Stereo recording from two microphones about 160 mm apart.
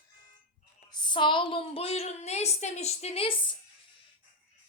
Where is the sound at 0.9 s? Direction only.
30° left (ahead or behind).